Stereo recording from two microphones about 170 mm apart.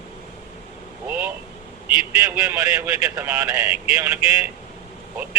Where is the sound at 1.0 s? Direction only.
10° right (ahead or behind).